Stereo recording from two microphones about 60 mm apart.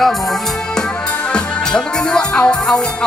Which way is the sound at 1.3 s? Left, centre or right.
Centre.